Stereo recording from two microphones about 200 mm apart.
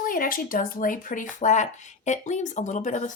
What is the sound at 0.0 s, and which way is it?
Speech, 45° left (ahead or behind).